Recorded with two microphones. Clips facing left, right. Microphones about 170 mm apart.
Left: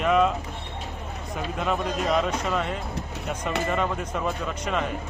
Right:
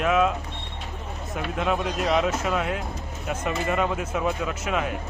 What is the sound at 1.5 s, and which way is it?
Speech, 5° right (ahead or behind).